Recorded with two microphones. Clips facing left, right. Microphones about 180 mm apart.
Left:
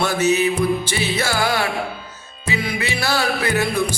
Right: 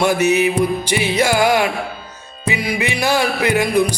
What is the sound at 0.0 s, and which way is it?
Music, 15° right (ahead or behind).